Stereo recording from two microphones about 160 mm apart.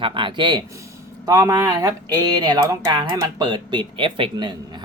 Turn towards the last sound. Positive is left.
turn(degrees=-30)  # may be behind; listen again after turning